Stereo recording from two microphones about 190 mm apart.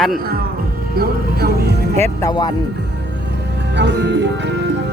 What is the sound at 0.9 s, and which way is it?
Music, 55° right (ahead or behind).